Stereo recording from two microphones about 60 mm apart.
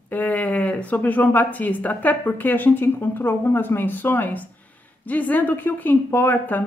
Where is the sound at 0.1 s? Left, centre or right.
Left.